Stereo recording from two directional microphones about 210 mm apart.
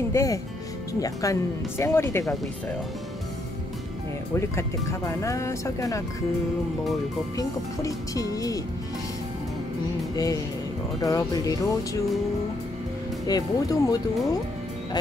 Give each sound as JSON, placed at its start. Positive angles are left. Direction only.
{"t": 0.1, "sound": "speech", "side_deg": 15}
{"t": 4.4, "sound": "speech", "side_deg": 15}
{"t": 7.3, "sound": "speech", "side_deg": 15}
{"t": 10.1, "sound": "speech", "side_deg": 15}
{"t": 13.3, "sound": "speech", "side_deg": 20}